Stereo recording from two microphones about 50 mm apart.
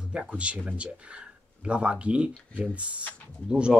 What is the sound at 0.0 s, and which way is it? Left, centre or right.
Speech, right.